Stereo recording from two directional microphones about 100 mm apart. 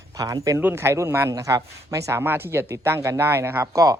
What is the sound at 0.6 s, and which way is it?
Speech, 25° right (ahead or behind).